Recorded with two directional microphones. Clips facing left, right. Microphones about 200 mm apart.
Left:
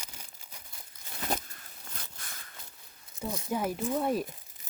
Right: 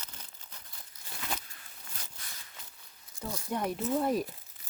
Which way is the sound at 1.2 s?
45° left (ahead or behind).